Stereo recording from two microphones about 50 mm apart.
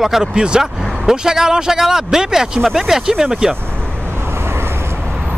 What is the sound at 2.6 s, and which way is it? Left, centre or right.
Speech, centre.